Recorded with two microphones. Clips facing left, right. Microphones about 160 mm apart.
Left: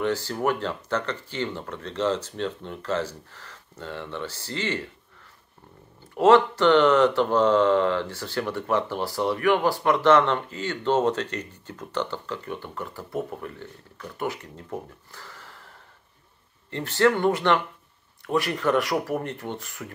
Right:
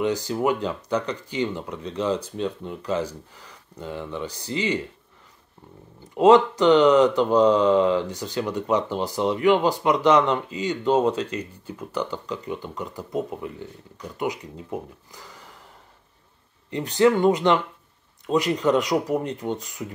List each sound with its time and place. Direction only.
0.0 s speech: 15° right (ahead or behind)
6.1 s speech: 15° right (ahead or behind)
16.7 s speech: 15° right (ahead or behind)